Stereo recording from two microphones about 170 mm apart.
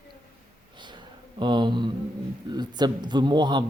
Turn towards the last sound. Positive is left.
turn(degrees=-25)  # may be behind; listen again after turning